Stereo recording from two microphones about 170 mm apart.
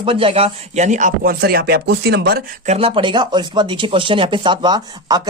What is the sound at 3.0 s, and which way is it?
Speech, 30° right (ahead or behind).